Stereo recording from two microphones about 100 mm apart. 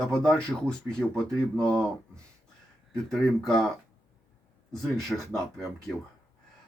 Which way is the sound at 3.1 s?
5° left (ahead or behind).